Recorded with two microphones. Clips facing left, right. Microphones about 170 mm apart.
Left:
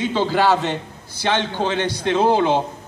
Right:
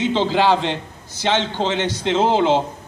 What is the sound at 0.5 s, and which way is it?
Speech, 10° left (ahead or behind).